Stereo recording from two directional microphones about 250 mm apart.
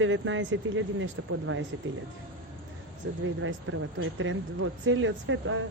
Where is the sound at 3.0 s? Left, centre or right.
Right.